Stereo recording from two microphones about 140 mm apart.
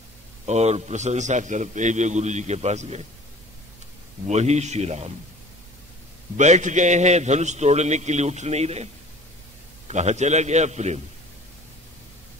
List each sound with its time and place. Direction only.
0.5 s a man's voice: 50° right (ahead or behind)
4.3 s a man's voice: 55° right (ahead or behind)
6.3 s a man's voice: 60° right (ahead or behind)
9.8 s a man's voice: 55° right (ahead or behind)